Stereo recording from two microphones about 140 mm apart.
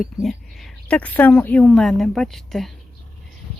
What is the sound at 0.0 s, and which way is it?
Speech, centre (ahead or behind).